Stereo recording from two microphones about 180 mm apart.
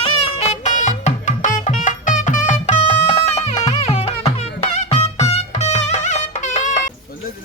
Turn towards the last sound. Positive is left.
turn(degrees=45)  # may be behind; listen again after turning